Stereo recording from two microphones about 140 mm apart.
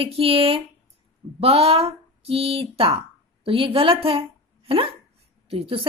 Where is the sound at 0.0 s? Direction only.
40° right (ahead or behind).